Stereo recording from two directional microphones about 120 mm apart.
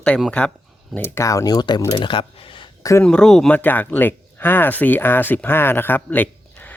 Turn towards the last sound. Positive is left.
turn(degrees=15)  # may be behind; listen again after turning